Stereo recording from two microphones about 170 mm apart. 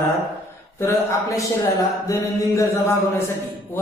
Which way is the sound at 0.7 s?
15° left (ahead or behind).